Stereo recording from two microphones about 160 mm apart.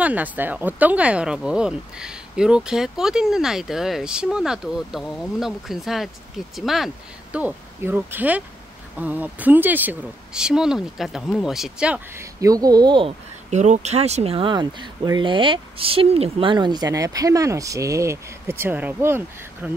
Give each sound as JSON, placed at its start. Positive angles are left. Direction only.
{"t": 0.0, "sound": "speech", "side_deg": -10}
{"t": 12.2, "sound": "speech", "side_deg": -20}
{"t": 13.5, "sound": "speech", "side_deg": -45}